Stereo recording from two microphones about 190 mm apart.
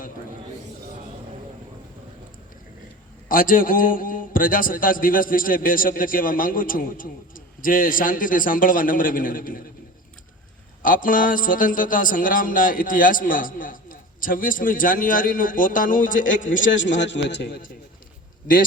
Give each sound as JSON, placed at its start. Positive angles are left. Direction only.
{"t": 3.2, "sound": "a man's voice", "side_deg": 45}
{"t": 10.8, "sound": "a man's voice", "side_deg": 45}
{"t": 16.7, "sound": "a man's voice", "side_deg": 70}